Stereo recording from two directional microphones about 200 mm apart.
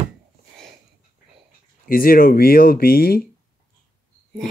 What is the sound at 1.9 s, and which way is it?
Speech, 45° left (ahead or behind).